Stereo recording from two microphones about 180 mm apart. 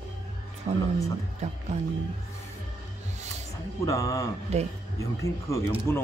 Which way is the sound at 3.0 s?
40° right (ahead or behind).